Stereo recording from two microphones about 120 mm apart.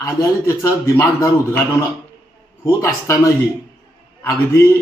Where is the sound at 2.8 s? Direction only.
25° left (ahead or behind).